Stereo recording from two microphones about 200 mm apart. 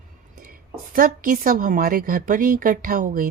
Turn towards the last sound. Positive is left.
turn(degrees=-45)  # may be behind; listen again after turning